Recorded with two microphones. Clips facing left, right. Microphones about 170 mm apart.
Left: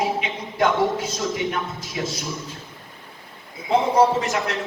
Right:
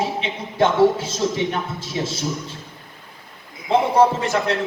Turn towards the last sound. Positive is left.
turn(degrees=-30)  # may be behind; listen again after turning